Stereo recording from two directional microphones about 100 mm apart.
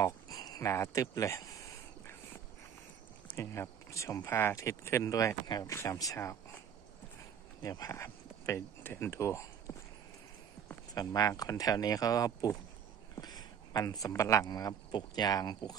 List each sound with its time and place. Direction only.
0.0 s a sound: 40° left (ahead or behind)
0.7 s speech: 30° left (ahead or behind)
3.3 s speech: 25° left (ahead or behind)
7.8 s speech: 30° left (ahead or behind)
11.0 s speech: 40° left (ahead or behind)